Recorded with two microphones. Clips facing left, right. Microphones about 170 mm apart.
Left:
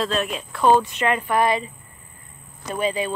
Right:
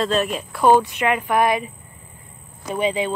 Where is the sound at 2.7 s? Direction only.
15° right (ahead or behind).